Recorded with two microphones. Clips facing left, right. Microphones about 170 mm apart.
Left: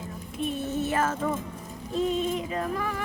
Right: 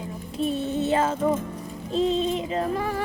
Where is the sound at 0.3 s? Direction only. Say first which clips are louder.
Right 4 dB; 30° right (ahead or behind).